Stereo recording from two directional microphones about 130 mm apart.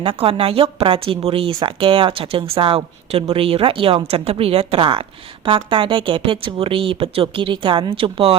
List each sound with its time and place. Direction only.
0.0 s speech: 45° right (ahead or behind)